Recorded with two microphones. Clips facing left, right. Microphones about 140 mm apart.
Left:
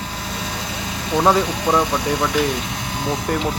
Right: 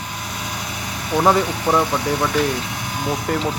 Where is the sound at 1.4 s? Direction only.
20° left (ahead or behind).